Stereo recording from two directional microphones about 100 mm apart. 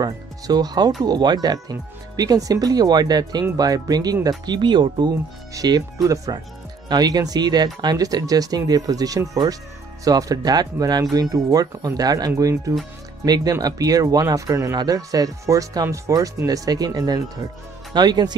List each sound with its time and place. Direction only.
0.0 s speech: 40° right (ahead or behind)
5.5 s speech: 40° right (ahead or behind)